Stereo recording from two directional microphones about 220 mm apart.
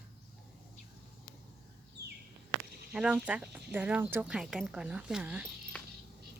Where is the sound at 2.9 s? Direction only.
5° right (ahead or behind).